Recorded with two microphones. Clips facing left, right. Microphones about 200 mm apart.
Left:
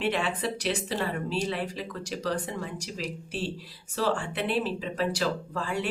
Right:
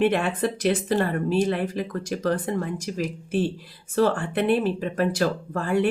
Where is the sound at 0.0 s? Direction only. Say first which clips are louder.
Right 7 dB; 55° right (ahead or behind).